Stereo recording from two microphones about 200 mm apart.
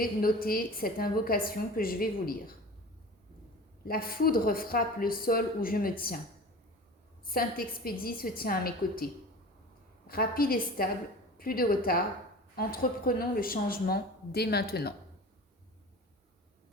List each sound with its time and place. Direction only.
0.0 s speech: 45° left (ahead or behind)
3.8 s speech: 45° left (ahead or behind)
7.3 s speech: 50° left (ahead or behind)
10.1 s speech: 50° left (ahead or behind)